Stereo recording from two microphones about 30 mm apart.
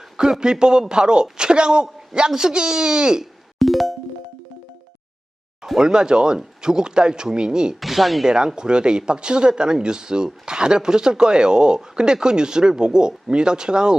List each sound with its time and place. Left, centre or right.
0.2 s speech: right
3.6 s music: centre
5.8 s speech: right
7.8 s speech: centre
8.3 s speech: right